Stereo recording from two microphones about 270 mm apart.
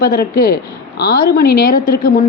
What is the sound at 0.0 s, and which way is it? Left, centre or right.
A woman's voice, left.